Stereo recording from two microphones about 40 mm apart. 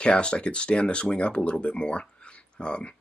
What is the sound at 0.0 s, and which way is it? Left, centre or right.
Speech, left.